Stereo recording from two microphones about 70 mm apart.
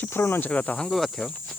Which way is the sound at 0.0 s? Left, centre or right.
Left.